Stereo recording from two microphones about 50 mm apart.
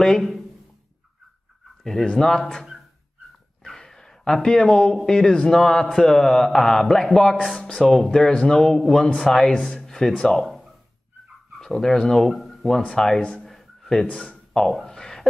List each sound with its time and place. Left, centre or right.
0.0 s speech: centre
2.0 s speech: centre
3.6 s a sound: centre
5.0 s speech: centre
11.6 s speech: centre
12.8 s speech: centre
13.5 s a sound: centre
14.2 s speech: centre
14.9 s a sound: centre